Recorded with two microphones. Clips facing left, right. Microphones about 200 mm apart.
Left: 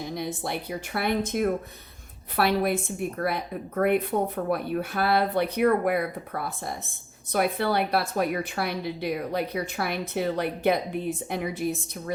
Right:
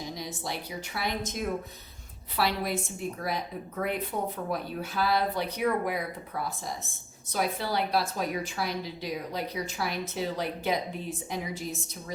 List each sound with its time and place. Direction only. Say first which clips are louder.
0.0 s a woman's voice: left 6 dB; 55° left (ahead or behind)